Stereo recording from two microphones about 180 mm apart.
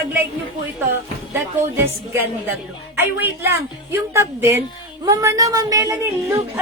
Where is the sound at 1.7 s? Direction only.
10° right (ahead or behind).